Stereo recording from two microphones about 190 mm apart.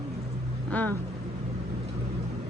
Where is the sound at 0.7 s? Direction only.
10° left (ahead or behind).